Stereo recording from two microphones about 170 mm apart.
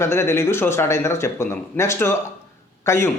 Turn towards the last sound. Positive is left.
turn(degrees=15)  # may be behind; listen again after turning